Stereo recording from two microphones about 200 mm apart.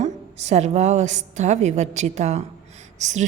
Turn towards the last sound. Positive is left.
turn(degrees=-35)  # may be behind; listen again after turning